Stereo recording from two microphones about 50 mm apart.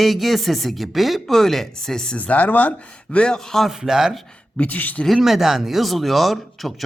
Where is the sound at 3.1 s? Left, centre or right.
Centre.